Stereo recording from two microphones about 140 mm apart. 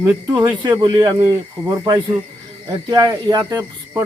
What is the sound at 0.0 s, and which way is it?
Speech, 20° right (ahead or behind).